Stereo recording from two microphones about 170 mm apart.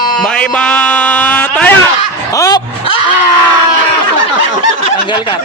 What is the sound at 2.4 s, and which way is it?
Speech, 20° left (ahead or behind).